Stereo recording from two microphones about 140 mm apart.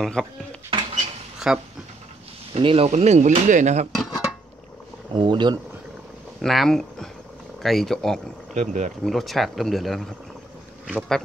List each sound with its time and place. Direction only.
0.0 s speech: 5° left (ahead or behind)
2.5 s speech: 45° right (ahead or behind)
3.9 s dishes: centre (ahead or behind)
5.1 s speech: 35° right (ahead or behind)
6.4 s speech: centre (ahead or behind)
8.5 s speech: 60° right (ahead or behind)
9.0 s speech: centre (ahead or behind)